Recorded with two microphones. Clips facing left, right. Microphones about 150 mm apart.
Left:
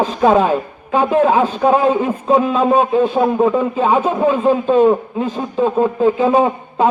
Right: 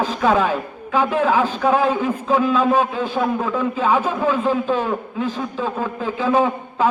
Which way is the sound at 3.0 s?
25° left (ahead or behind).